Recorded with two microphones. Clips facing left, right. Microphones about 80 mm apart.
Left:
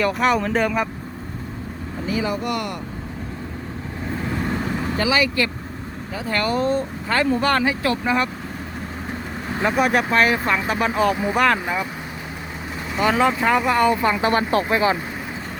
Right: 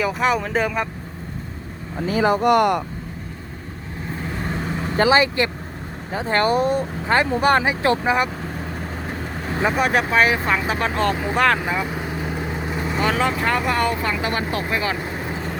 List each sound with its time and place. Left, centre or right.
0.0 s speech: centre
2.0 s speech: right
4.4 s vehicle: centre
4.9 s speech: right
9.6 s speech: centre
11.4 s speech: centre
13.1 s speech: centre
14.0 s speech: left
14.3 s speech: left